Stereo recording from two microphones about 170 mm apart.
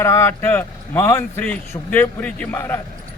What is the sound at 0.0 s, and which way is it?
A man's voice, 15° left (ahead or behind).